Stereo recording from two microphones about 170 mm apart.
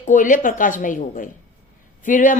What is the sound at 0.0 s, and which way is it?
A woman's voice, 50° left (ahead or behind).